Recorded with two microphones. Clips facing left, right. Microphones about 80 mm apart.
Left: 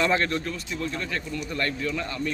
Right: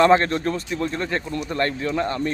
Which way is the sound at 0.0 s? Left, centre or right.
Right.